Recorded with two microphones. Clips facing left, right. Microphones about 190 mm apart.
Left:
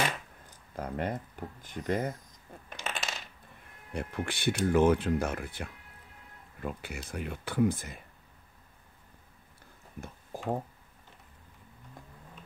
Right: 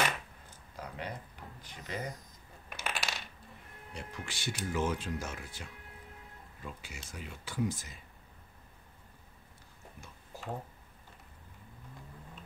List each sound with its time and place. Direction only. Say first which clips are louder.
0.7 s speech: left 8 dB; 50° left (ahead or behind)
2.7 s coin: left 1 dB; 20° left (ahead or behind)
3.9 s speech: left 9 dB; 55° left (ahead or behind)
9.9 s a sound: left 9 dB; 50° left (ahead or behind)